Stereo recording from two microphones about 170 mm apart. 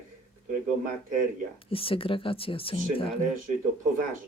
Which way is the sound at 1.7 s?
35° left (ahead or behind).